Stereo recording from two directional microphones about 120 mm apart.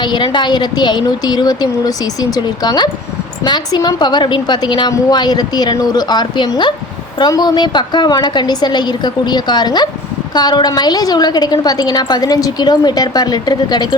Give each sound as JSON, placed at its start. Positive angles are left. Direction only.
{"t": 0.0, "sound": "a woman's voice", "side_deg": 40}